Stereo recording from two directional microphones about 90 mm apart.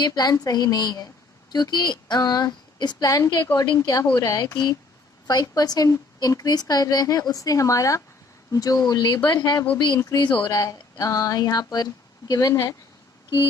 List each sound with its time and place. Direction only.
0.0 s a woman's voice: 50° left (ahead or behind)
3.5 s speech: 55° left (ahead or behind)
3.8 s a woman's voice: 40° left (ahead or behind)